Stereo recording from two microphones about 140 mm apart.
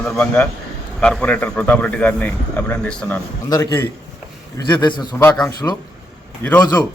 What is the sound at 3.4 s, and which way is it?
A man's voice, 25° left (ahead or behind).